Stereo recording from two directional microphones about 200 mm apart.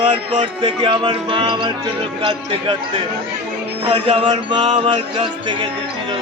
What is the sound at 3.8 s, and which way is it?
Music, 25° right (ahead or behind).